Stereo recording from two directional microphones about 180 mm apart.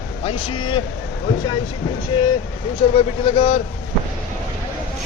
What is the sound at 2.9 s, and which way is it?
Speech, 30° left (ahead or behind).